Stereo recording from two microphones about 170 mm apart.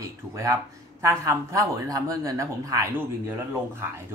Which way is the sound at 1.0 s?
15° right (ahead or behind).